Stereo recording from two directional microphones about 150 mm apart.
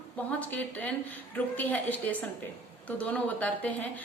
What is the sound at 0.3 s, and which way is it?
A woman's voice, 10° left (ahead or behind).